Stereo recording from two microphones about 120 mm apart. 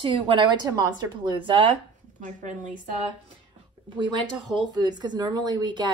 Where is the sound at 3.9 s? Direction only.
40° right (ahead or behind).